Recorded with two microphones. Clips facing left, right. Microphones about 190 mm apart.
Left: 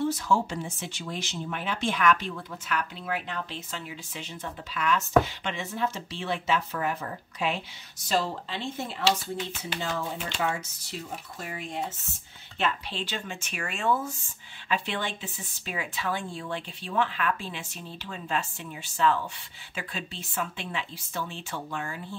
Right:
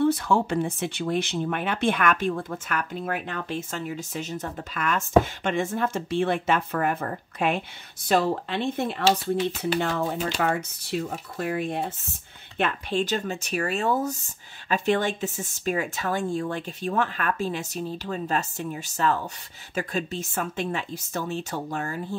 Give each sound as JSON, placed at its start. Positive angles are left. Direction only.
{"t": 0.0, "sound": "speech", "side_deg": -60}